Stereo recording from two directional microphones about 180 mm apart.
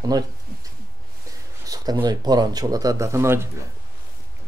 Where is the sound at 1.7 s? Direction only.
20° right (ahead or behind).